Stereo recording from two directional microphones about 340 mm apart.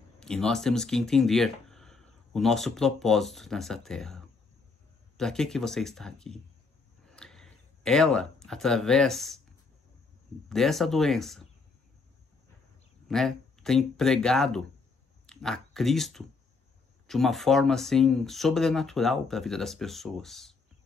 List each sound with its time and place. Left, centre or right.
0.2 s speech: centre
7.1 s a sound: centre
10.5 s speech: centre
13.1 s speech: centre